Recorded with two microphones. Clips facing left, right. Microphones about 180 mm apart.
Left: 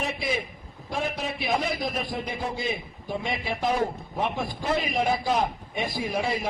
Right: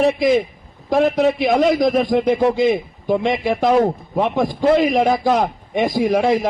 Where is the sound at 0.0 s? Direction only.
85° right.